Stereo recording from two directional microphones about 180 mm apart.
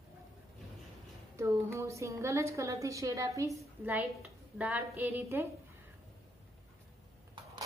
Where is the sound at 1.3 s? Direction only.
15° right (ahead or behind).